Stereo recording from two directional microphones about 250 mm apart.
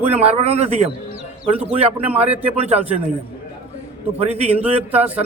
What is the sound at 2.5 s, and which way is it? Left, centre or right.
Speech, right.